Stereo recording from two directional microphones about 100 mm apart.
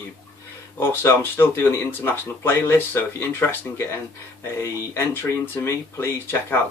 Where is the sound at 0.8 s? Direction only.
25° left (ahead or behind).